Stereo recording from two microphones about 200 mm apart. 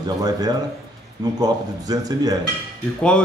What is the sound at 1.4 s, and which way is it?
Speech, 20° right (ahead or behind).